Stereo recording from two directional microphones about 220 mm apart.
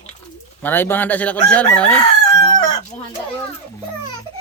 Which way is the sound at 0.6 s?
10° left (ahead or behind).